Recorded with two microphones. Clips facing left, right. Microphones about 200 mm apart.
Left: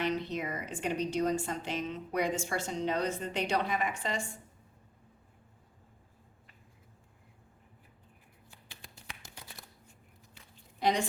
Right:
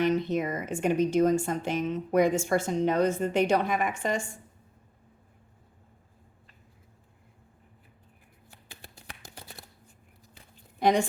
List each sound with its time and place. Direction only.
0.0 s a woman's voice: 50° right (ahead or behind)
8.7 s shuffling cards: 55° right (ahead or behind)
10.8 s a sound: 50° right (ahead or behind)